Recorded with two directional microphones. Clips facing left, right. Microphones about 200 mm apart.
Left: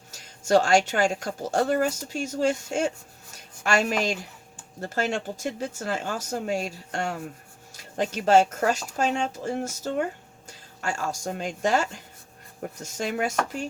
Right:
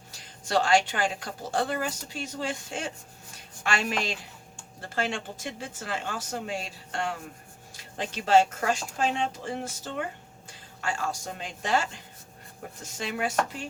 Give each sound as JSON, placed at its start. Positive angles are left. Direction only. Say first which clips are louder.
{"t": 0.1, "sound": "a woman's voice", "louder": "left 7 dB", "side_deg": 45}